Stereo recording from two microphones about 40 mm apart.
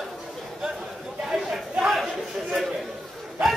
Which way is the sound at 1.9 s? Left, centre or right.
Centre.